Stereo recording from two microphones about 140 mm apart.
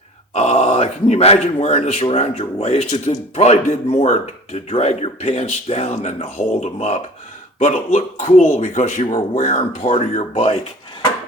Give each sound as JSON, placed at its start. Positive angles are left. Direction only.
{"t": 0.3, "sound": "speech", "side_deg": 50}